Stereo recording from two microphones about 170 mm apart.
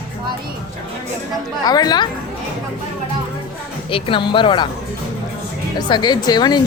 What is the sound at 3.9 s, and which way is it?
Speech, 30° left (ahead or behind).